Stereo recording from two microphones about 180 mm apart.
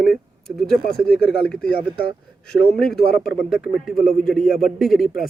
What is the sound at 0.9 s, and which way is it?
Speech, 5° left (ahead or behind).